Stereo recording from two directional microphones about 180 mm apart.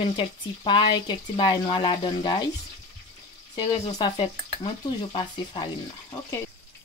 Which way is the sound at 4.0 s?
25° left (ahead or behind).